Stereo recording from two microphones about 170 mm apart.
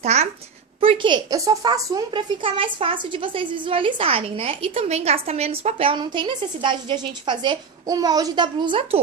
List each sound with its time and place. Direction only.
0.0 s a child's voice: 40° right (ahead or behind)
0.8 s a woman's voice: 30° right (ahead or behind)